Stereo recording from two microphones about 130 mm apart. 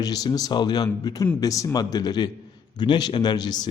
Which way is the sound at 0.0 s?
30° left (ahead or behind).